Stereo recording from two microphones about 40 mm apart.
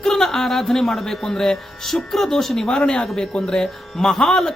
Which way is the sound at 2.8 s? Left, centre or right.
Left.